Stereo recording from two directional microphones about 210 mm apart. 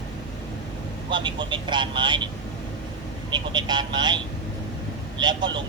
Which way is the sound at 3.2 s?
20° right (ahead or behind).